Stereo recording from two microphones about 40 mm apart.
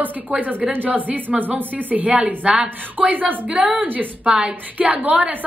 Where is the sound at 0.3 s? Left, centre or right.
Right.